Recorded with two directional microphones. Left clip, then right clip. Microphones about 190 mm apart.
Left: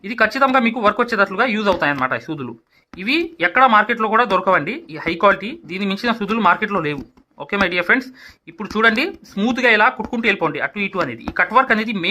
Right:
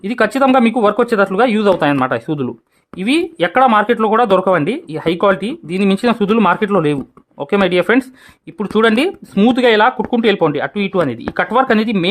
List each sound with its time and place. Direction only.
0.0 s speech: 65° right (ahead or behind)